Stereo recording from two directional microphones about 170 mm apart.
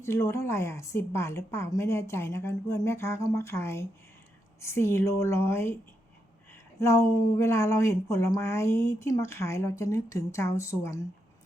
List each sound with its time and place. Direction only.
0.0 s speech: 15° left (ahead or behind)